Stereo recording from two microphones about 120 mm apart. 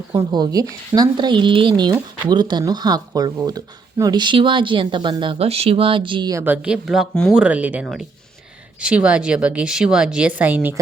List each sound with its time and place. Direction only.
0.1 s speech: 35° right (ahead or behind)
6.3 s a woman's voice: 15° right (ahead or behind)
6.8 s speech: centre (ahead or behind)
7.3 s a woman's voice: 10° right (ahead or behind)